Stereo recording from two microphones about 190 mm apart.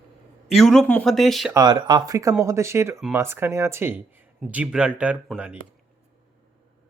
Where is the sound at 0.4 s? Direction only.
Centre (ahead or behind).